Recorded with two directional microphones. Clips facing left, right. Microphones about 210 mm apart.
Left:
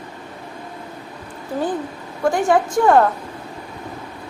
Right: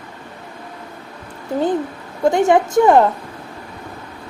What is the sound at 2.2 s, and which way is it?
Speech, 20° right (ahead or behind).